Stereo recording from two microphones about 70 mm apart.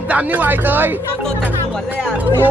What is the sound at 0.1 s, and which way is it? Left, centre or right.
Speech, right.